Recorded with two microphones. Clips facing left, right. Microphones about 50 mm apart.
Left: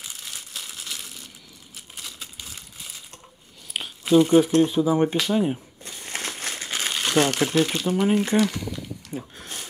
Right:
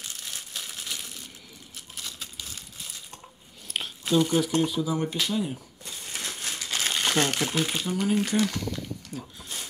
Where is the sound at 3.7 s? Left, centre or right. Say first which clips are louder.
Left 1 dB; centre.